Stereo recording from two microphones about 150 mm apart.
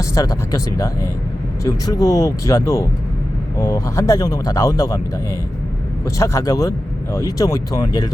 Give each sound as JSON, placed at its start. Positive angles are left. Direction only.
{"t": 0.0, "sound": "speech", "side_deg": 20}
{"t": 6.1, "sound": "speech", "side_deg": 20}